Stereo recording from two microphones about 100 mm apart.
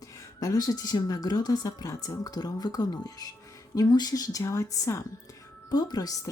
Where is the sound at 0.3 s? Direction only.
35° left (ahead or behind).